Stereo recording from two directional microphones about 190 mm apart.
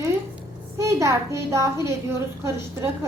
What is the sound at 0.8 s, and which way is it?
A child's voice, 15° right (ahead or behind).